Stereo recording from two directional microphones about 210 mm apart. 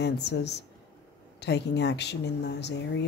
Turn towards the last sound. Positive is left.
turn(degrees=55)  # may be behind; listen again after turning